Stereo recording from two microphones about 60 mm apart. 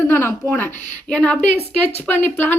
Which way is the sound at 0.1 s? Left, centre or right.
Left.